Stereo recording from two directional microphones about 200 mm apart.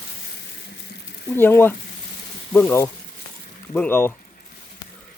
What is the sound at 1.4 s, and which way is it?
Speech, 10° left (ahead or behind).